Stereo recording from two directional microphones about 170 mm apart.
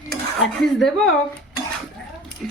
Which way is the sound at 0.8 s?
5° left (ahead or behind).